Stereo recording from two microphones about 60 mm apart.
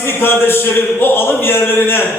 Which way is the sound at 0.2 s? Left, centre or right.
Left.